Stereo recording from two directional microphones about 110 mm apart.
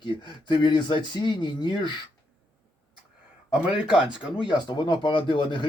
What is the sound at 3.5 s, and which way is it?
Speech, 5° right (ahead or behind).